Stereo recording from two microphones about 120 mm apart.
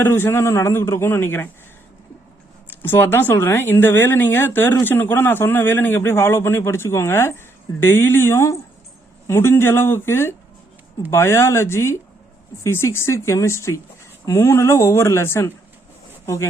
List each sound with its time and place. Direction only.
0.0 s speech: 20° left (ahead or behind)
2.6 s speech: 15° left (ahead or behind)